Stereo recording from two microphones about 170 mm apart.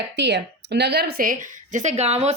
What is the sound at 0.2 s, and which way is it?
A woman's voice, 85° right.